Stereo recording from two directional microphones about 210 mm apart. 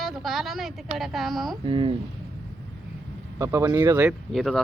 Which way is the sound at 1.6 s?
25° right (ahead or behind).